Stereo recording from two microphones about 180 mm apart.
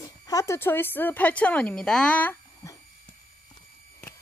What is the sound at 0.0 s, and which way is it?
Speech, 20° left (ahead or behind).